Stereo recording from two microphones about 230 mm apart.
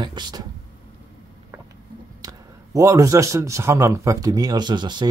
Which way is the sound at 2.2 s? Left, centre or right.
Centre.